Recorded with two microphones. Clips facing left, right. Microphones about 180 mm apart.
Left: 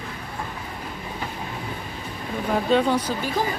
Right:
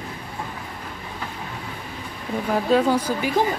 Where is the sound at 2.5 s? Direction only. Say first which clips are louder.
Right 1 dB; 5° right (ahead or behind).